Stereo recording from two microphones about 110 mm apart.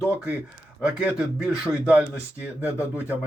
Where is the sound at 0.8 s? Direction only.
15° right (ahead or behind).